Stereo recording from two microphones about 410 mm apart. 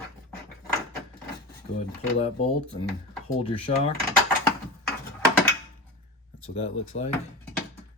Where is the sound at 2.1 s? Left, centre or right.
Centre.